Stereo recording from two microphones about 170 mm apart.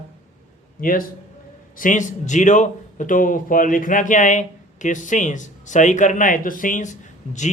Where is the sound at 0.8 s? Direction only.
55° left (ahead or behind).